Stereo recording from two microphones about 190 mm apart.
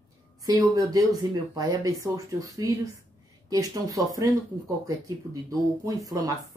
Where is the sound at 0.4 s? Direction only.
20° right (ahead or behind).